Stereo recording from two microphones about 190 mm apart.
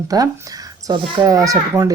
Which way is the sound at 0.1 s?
20° right (ahead or behind).